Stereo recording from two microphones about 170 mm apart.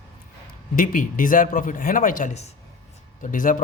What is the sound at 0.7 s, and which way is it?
Speech, 50° left (ahead or behind).